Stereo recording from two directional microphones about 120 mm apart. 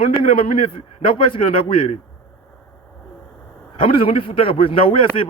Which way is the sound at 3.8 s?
50° left (ahead or behind).